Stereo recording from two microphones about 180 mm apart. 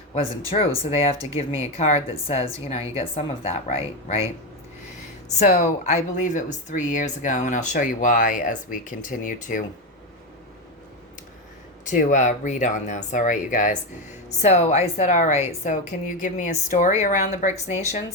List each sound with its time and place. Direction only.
0.5 s a woman's voice: 35° left (ahead or behind)
5.4 s speech: 40° left (ahead or behind)
11.9 s a woman's voice: 45° left (ahead or behind)